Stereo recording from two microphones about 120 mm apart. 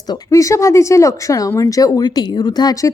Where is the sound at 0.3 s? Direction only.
25° left (ahead or behind).